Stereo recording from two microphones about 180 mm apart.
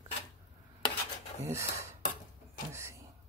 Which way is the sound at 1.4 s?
15° right (ahead or behind).